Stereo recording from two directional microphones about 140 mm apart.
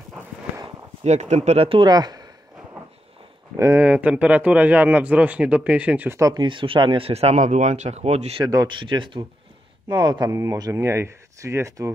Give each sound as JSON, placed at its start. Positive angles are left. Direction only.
{"t": 1.0, "sound": "speech", "side_deg": -55}
{"t": 1.9, "sound": "a sound", "side_deg": -30}
{"t": 3.5, "sound": "speech", "side_deg": -20}
{"t": 6.4, "sound": "speech", "side_deg": -35}
{"t": 8.5, "sound": "speech", "side_deg": -30}